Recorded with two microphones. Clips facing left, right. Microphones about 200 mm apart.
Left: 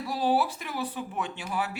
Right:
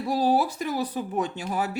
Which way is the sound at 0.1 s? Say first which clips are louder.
Right 3 dB; 40° right (ahead or behind).